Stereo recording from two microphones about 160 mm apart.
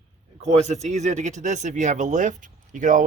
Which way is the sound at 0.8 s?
45° right (ahead or behind).